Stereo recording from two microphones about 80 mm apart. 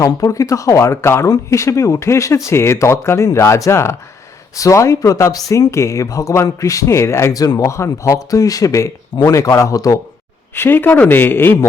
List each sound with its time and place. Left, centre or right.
0.0 s speech: left
7.3 s speech: left
10.5 s speech: left